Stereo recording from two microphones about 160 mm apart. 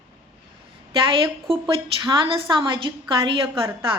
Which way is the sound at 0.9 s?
35° right (ahead or behind).